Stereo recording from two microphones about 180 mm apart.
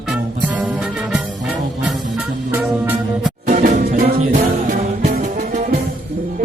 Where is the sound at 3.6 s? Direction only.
55° right (ahead or behind).